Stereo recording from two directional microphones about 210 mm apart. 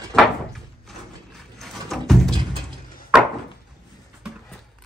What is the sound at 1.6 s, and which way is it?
Music, centre (ahead or behind).